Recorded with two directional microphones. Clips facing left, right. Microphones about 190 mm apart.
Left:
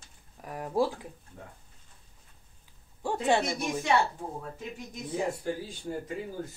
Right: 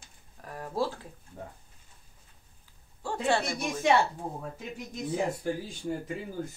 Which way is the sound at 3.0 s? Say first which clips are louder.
Left 2 dB; 20° left (ahead or behind).